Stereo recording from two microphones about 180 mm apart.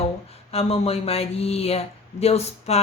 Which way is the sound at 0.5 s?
35° left (ahead or behind).